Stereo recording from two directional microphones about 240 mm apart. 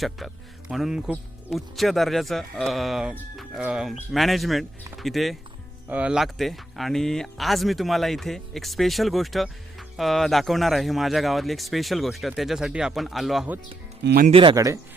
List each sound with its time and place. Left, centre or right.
0.7 s speech: centre
14.0 s speech: right
14.3 s speech: right